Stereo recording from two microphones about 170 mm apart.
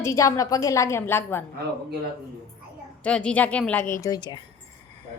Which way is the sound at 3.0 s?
5° left (ahead or behind).